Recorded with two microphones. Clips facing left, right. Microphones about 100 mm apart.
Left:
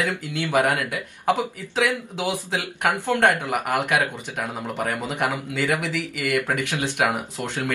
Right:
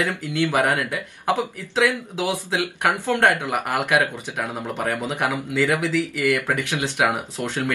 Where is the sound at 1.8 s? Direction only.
15° left (ahead or behind).